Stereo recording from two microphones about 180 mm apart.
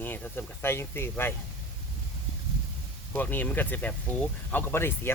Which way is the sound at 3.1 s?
10° left (ahead or behind).